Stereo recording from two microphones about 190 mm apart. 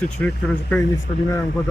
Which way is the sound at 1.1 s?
30° left (ahead or behind).